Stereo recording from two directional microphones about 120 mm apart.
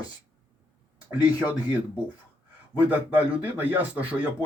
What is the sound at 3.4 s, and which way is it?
Speech, 15° right (ahead or behind).